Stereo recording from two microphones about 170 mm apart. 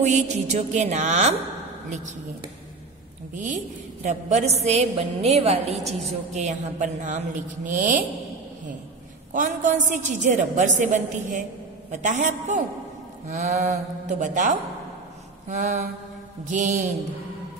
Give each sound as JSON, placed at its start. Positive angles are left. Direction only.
{"t": 0.0, "sound": "speech", "side_deg": -45}
{"t": 3.3, "sound": "a woman's voice", "side_deg": -45}
{"t": 9.3, "sound": "speech", "side_deg": -50}